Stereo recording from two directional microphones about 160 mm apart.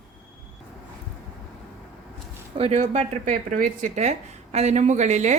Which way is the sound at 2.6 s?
45° right (ahead or behind).